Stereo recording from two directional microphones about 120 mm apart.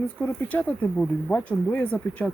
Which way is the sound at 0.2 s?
15° left (ahead or behind).